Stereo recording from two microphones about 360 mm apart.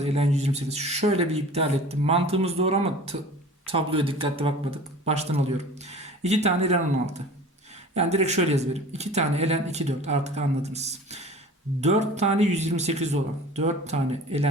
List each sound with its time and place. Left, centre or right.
0.0 s speech: centre